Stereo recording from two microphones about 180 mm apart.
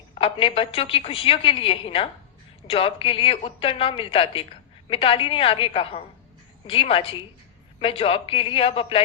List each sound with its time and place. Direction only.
0.2 s a woman's voice: 30° left (ahead or behind)